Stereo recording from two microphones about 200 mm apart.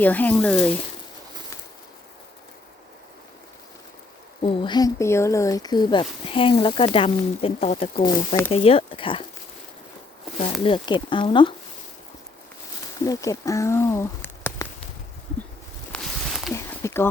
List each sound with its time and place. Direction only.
0.0 s speech: 10° left (ahead or behind)
4.4 s speech: 20° left (ahead or behind)
10.6 s speech: 25° left (ahead or behind)
13.1 s speech: 15° left (ahead or behind)
15.9 s a sound: centre (ahead or behind)
16.6 s a sound: 10° left (ahead or behind)